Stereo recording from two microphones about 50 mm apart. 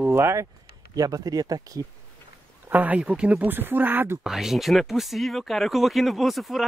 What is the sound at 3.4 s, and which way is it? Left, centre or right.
Speech, right.